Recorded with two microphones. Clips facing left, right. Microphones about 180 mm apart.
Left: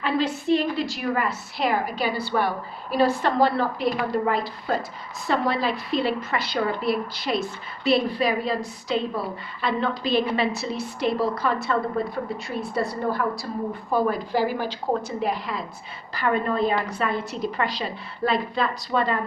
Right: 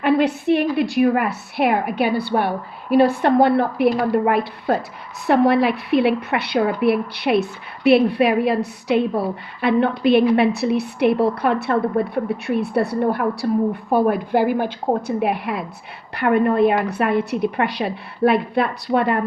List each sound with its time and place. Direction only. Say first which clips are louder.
0.0 s a woman's voice: right 7 dB; 60° right (ahead or behind)